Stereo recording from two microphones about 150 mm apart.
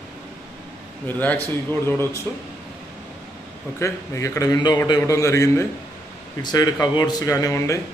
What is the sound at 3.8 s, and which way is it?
A man's voice, 20° left (ahead or behind).